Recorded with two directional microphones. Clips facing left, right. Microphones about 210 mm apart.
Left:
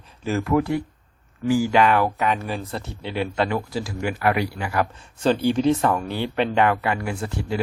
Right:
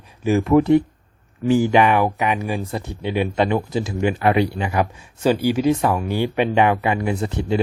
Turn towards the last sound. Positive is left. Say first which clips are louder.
# right 5 dB
turn(degrees=-20)  # may be behind; listen again after turning